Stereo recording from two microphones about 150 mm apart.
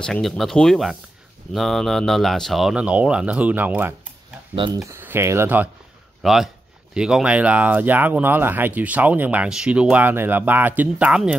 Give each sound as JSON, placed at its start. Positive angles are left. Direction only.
{"t": 0.0, "sound": "speech", "side_deg": 5}
{"t": 6.2, "sound": "speech", "side_deg": 0}